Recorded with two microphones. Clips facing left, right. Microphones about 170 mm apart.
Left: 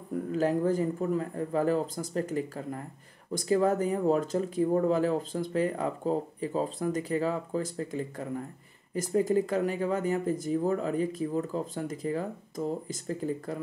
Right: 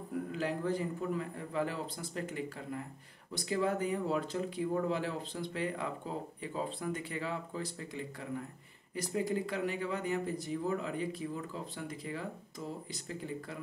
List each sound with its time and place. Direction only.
0.3 s speech: 45° left (ahead or behind)